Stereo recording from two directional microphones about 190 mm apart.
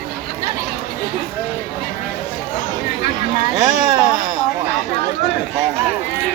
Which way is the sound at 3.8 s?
20° right (ahead or behind).